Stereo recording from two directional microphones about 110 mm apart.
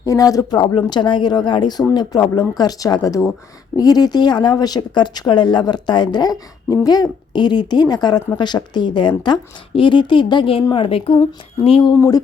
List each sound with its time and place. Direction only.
0.0 s speech: 30° left (ahead or behind); by 11.9 s 55° left (ahead or behind)
11.9 s speech: 30° left (ahead or behind)